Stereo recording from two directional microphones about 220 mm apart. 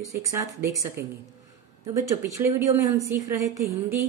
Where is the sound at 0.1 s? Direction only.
15° right (ahead or behind).